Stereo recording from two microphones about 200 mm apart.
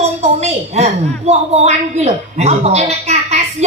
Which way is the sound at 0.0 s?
30° right (ahead or behind).